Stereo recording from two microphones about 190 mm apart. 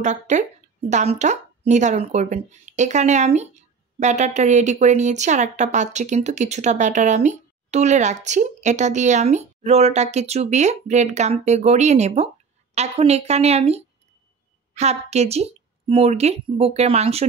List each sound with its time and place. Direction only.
0.0 s speech: 40° right (ahead or behind)